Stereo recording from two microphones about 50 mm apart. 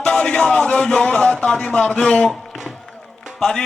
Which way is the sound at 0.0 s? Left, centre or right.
Left.